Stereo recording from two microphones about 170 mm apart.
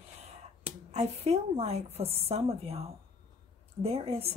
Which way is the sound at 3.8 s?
35° right (ahead or behind).